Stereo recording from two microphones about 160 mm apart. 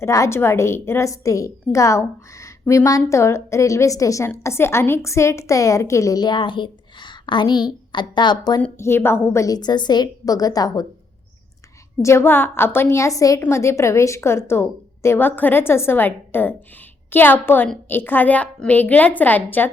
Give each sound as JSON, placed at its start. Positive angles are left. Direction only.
{"t": 0.0, "sound": "a woman's voice", "side_deg": 20}
{"t": 8.6, "sound": "a woman's voice", "side_deg": 15}
{"t": 12.0, "sound": "a woman's voice", "side_deg": 15}